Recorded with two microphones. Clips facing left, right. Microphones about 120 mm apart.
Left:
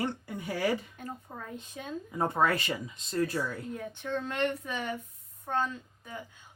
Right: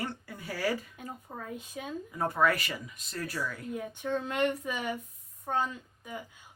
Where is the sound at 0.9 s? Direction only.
5° right (ahead or behind).